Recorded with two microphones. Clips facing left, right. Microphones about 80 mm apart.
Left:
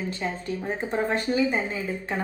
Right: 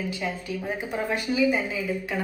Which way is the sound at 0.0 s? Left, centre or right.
Left.